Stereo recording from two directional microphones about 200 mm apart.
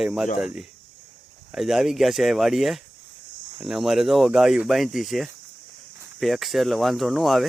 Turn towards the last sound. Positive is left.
turn(degrees=0)  # may be behind; listen again after turning